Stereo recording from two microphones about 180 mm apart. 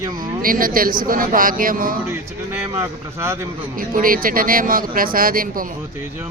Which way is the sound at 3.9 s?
50° right (ahead or behind).